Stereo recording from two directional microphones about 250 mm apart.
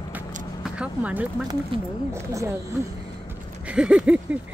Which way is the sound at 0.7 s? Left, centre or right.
Centre.